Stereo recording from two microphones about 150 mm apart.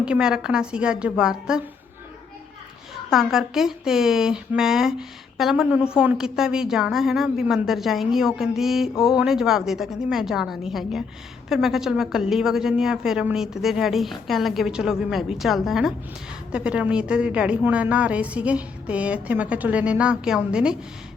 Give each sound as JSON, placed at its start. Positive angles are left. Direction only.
{"t": 0.0, "sound": "a woman's voice", "side_deg": -5}
{"t": 3.1, "sound": "a woman's voice", "side_deg": 0}